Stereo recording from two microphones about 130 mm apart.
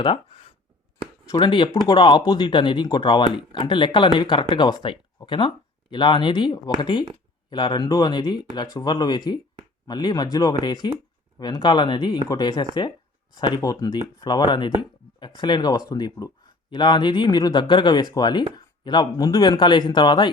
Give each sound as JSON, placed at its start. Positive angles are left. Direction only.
{"t": 0.0, "sound": "speech", "side_deg": 45}